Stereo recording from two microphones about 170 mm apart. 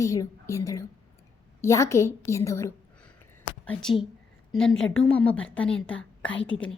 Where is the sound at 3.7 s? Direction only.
5° left (ahead or behind).